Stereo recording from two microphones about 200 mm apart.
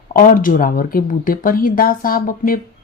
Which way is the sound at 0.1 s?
45° left (ahead or behind).